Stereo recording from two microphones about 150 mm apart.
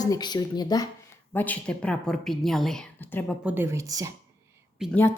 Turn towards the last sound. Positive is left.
turn(degrees=15)  # may be behind; listen again after turning